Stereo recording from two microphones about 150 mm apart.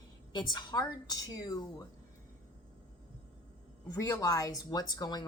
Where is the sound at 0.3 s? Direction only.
30° left (ahead or behind).